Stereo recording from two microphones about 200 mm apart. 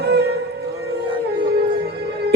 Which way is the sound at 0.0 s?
55° right (ahead or behind).